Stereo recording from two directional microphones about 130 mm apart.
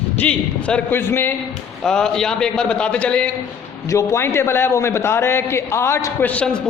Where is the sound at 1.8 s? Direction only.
5° left (ahead or behind).